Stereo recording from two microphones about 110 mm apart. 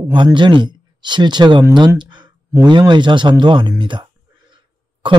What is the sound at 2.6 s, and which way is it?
Speech, 45° right (ahead or behind).